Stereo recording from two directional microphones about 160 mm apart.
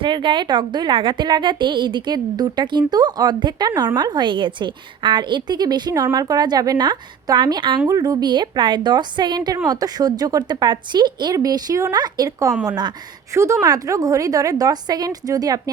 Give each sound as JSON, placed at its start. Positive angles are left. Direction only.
{"t": 0.0, "sound": "a woman's voice", "side_deg": -30}